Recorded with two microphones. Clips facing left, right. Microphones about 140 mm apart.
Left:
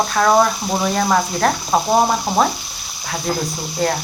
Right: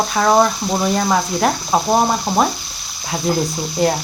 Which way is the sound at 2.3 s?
10° left (ahead or behind).